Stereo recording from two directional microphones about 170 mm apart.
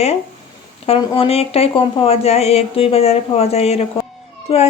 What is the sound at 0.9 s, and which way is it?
Speech, 30° left (ahead or behind).